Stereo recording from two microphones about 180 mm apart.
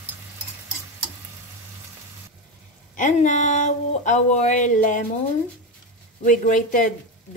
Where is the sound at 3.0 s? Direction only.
45° left (ahead or behind).